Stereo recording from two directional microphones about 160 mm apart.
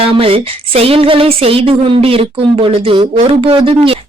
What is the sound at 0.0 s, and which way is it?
Speech, 35° right (ahead or behind).